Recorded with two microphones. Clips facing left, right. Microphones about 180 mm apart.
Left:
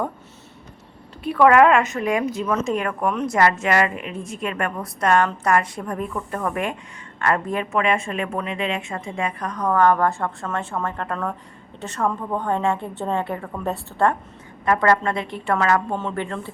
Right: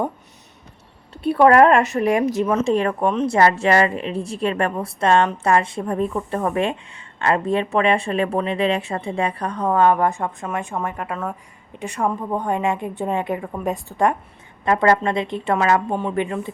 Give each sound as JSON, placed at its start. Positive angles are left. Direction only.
{"t": 1.3, "sound": "a woman's voice", "side_deg": -35}